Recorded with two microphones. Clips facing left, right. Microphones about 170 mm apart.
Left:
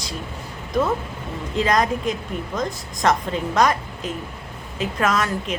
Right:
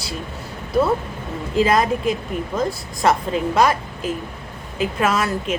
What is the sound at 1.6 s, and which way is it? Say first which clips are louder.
A woman's voice: right 3 dB; 5° right (ahead or behind).